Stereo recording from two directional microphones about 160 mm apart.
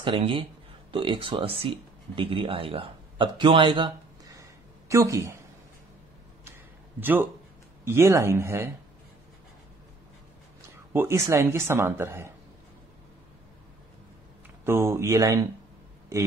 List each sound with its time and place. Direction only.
0.0 s speech: 35° right (ahead or behind)
7.0 s speech: 10° right (ahead or behind)
10.9 s speech: 15° right (ahead or behind)
14.6 s speech: 15° right (ahead or behind)